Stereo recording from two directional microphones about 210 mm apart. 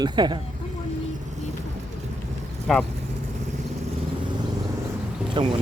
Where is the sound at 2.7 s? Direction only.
Centre (ahead or behind).